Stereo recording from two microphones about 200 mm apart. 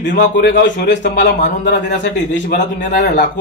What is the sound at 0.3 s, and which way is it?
A man's voice, 60° left (ahead or behind).